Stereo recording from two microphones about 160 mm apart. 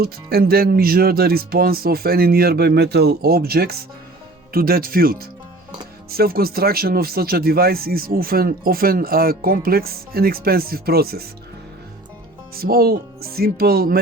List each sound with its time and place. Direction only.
0.0 s speech: 75° right (ahead or behind)
12.5 s speech: 65° right (ahead or behind)